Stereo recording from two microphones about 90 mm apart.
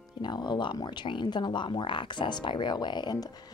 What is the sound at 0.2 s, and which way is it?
Speech, 55° left (ahead or behind).